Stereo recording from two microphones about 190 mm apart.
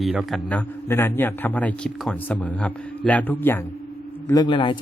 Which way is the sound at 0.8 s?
10° left (ahead or behind).